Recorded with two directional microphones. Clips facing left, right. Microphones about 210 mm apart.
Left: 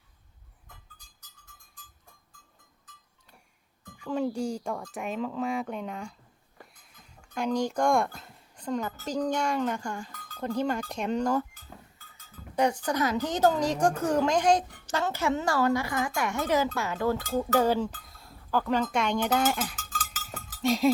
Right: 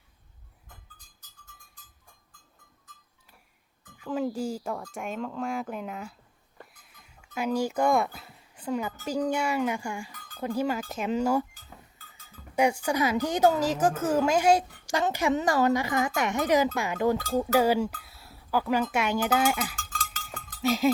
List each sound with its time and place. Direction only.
3.9 s speech: centre (ahead or behind)
12.5 s a woman's voice: 10° right (ahead or behind)
19.7 s cowbell: 5° left (ahead or behind)